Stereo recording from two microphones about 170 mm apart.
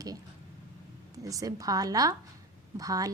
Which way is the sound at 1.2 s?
20° right (ahead or behind).